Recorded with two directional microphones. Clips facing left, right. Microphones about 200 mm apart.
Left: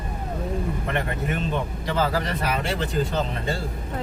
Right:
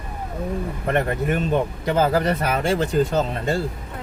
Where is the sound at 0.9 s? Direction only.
45° right (ahead or behind).